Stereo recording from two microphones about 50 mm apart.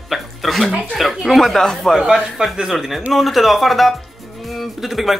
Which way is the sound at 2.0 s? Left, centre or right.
Centre.